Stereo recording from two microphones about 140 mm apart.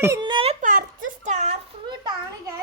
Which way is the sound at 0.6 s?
75° right (ahead or behind).